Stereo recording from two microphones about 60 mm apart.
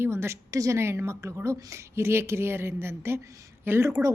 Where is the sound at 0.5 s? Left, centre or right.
Right.